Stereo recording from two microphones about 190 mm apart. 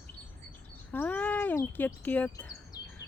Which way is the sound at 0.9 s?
10° left (ahead or behind).